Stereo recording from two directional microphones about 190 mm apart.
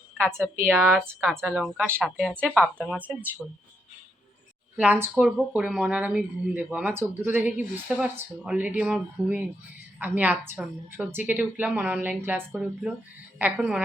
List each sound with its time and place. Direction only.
0.2 s speech: 5° left (ahead or behind)
0.6 s speech: 10° right (ahead or behind)
4.8 s speech: 10° right (ahead or behind)